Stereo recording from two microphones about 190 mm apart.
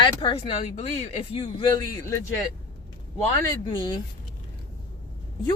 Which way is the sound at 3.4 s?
20° left (ahead or behind).